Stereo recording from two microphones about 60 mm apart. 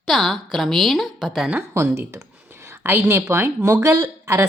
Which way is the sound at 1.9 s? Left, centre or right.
Right.